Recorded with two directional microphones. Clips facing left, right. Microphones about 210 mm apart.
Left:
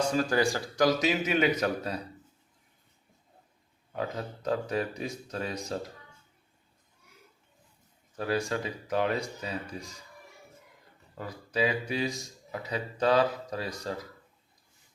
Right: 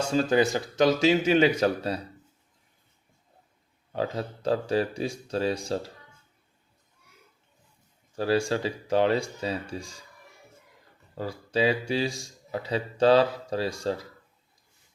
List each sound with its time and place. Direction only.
0.0 s speech: 25° right (ahead or behind)
3.9 s speech: 30° right (ahead or behind)
8.1 s speech: 30° right (ahead or behind)
11.1 s speech: 30° right (ahead or behind)